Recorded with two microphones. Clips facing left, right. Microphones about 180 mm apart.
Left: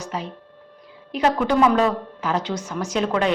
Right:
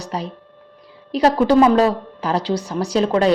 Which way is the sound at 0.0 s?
35° right (ahead or behind).